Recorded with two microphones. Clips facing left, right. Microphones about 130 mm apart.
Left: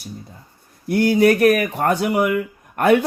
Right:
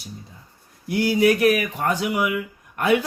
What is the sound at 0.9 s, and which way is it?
A man's voice, 50° left (ahead or behind).